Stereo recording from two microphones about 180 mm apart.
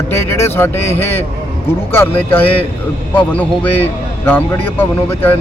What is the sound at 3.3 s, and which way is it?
Speech, 10° left (ahead or behind).